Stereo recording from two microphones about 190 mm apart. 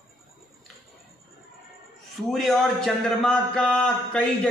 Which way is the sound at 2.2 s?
Centre (ahead or behind).